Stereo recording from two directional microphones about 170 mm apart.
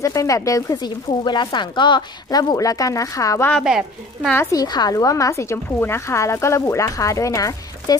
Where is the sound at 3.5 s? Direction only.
Centre (ahead or behind).